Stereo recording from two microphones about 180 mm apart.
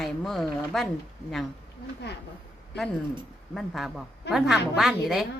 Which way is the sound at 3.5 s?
Centre (ahead or behind).